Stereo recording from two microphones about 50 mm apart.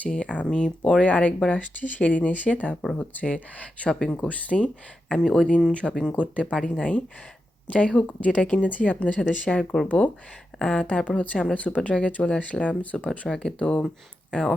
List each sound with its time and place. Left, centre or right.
0.1 s speech: left
4.3 s speech: left
13.1 s speech: centre